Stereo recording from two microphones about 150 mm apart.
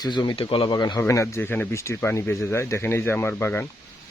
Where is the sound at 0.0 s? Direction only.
30° left (ahead or behind).